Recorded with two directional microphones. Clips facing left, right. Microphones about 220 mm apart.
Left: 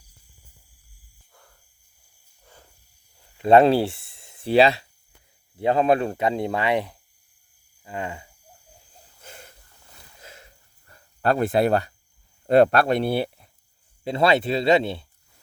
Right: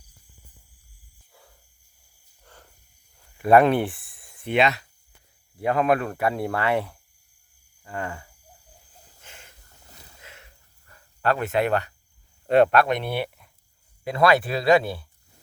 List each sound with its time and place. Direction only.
1.3 s a sound: 5° right (ahead or behind)
2.4 s cricket: 10° left (ahead or behind)
3.3 s speech: 25° left (ahead or behind)
9.2 s a sound: 40° left (ahead or behind)
10.3 s cricket: 35° left (ahead or behind)
12.5 s speech: 35° left (ahead or behind)